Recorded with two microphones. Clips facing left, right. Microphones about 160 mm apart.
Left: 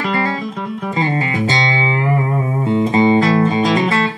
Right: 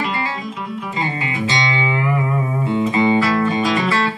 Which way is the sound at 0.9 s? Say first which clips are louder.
Left 6 dB; 40° left (ahead or behind).